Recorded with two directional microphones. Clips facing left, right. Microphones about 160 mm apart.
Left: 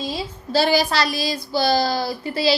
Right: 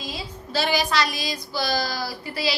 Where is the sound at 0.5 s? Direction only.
30° left (ahead or behind).